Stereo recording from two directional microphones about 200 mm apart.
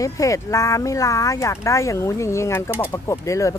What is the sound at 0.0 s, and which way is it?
Speech, 15° left (ahead or behind).